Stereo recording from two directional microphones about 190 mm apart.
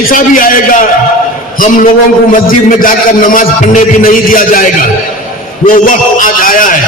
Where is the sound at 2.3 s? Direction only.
45° left (ahead or behind).